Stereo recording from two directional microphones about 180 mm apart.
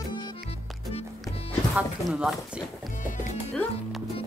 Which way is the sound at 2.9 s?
45° left (ahead or behind).